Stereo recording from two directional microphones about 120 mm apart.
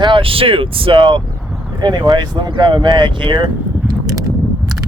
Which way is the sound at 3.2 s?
40° right (ahead or behind).